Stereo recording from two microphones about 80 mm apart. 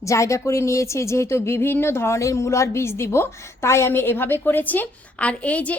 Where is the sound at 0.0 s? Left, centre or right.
Left.